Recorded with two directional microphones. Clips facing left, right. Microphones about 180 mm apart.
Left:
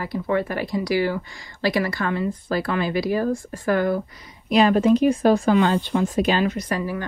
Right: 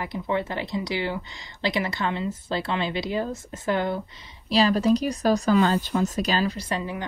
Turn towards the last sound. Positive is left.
turn(degrees=-20)  # may be behind; listen again after turning